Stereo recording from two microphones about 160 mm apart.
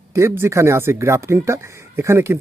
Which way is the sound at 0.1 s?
15° right (ahead or behind).